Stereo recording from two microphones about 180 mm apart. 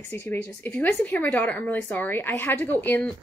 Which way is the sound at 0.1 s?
10° left (ahead or behind).